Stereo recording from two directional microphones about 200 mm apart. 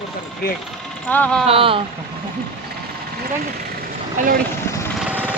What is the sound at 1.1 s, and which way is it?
Speech, 5° left (ahead or behind).